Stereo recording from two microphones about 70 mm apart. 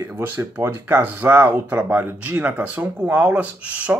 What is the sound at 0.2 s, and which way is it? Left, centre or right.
Speech, right.